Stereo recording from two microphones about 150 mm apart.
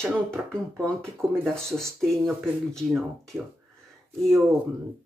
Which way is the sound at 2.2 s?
Centre (ahead or behind).